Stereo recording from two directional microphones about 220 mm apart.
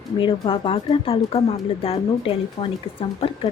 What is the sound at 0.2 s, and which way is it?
Speech, 25° left (ahead or behind).